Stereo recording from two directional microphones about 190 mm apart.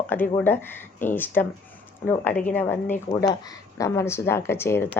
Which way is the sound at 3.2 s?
20° left (ahead or behind).